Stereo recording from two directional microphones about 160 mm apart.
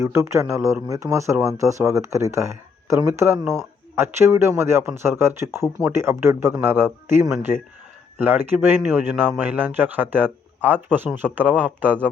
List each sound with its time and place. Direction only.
0.0 s speech: 15° right (ahead or behind)